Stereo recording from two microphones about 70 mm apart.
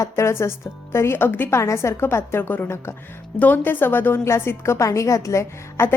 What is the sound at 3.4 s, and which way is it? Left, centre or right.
A woman's voice, left.